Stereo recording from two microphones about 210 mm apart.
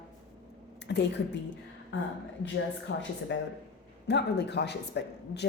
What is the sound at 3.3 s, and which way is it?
A man's voice, 60° left (ahead or behind).